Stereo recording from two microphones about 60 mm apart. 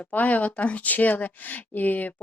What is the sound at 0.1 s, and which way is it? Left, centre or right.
Speech, left.